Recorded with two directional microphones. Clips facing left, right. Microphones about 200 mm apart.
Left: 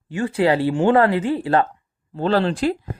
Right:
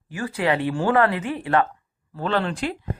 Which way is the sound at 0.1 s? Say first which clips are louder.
Left 5 dB; 25° left (ahead or behind).